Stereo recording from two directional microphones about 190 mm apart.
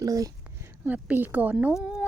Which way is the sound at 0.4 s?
10° right (ahead or behind).